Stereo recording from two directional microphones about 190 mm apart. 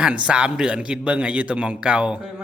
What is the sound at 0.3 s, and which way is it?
A man's voice, 5° right (ahead or behind).